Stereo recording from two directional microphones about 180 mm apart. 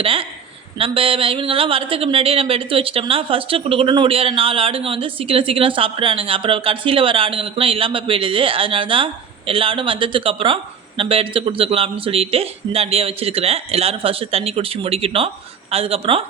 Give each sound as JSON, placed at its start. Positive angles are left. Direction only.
{"t": 0.0, "sound": "a woman's voice", "side_deg": -30}